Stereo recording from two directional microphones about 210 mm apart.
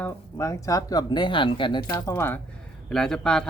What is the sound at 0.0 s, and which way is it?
Speech, 15° left (ahead or behind).